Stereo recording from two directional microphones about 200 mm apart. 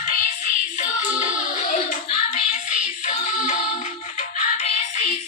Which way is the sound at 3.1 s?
35° left (ahead or behind).